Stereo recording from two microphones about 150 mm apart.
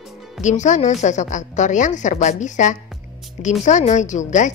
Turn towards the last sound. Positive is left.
turn(degrees=55)  # may be behind; listen again after turning